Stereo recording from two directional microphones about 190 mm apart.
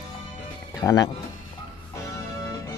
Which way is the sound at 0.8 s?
20° left (ahead or behind).